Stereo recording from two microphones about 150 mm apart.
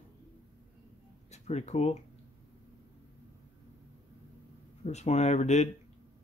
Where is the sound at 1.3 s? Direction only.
50° left (ahead or behind).